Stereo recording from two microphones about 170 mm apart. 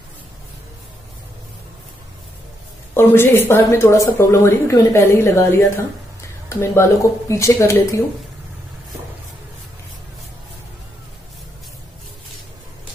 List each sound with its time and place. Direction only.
2.9 s speech: 15° left (ahead or behind)